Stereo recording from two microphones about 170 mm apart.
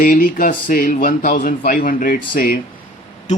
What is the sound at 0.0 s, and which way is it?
Speech, 50° left (ahead or behind).